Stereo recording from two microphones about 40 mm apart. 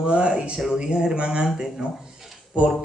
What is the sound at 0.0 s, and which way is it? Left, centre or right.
Speech, right.